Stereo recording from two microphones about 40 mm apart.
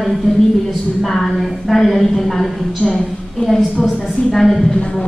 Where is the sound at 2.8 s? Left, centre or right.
Left.